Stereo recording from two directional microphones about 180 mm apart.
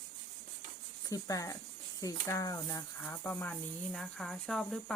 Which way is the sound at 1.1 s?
20° left (ahead or behind).